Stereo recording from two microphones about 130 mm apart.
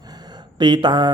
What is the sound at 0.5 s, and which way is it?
Mantra, 35° right (ahead or behind).